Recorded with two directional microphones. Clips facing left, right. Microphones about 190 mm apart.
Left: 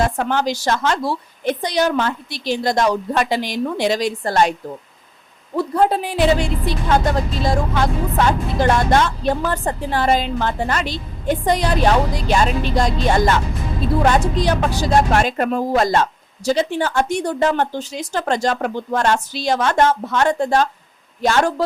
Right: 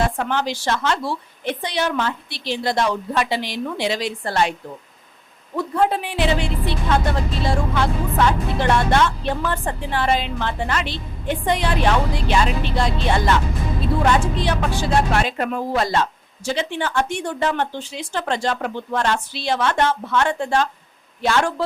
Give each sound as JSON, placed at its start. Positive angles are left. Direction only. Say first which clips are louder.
{"t": 0.2, "sound": "a woman's voice", "louder": "left 3 dB", "side_deg": 40}
{"t": 5.5, "sound": "a woman's voice", "louder": "left 3 dB", "side_deg": 35}